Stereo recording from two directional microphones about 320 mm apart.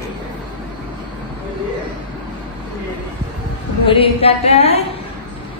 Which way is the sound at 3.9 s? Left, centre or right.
Centre.